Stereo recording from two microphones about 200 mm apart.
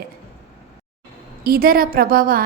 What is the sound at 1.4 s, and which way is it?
Speech, 50° right (ahead or behind).